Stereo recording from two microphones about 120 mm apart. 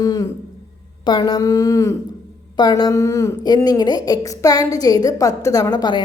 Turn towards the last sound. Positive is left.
turn(degrees=35)  # may be behind; listen again after turning